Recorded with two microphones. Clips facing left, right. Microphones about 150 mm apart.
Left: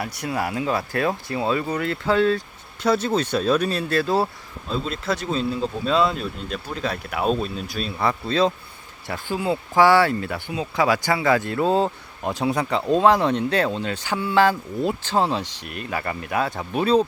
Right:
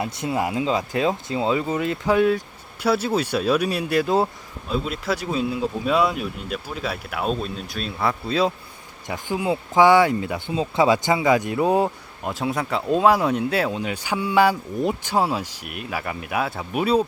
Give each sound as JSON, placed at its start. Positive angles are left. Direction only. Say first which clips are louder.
{"t": 0.0, "sound": "speech", "louder": "right 2 dB", "side_deg": -25}
{"t": 12.2, "sound": "speech", "louder": "left 2 dB", "side_deg": 0}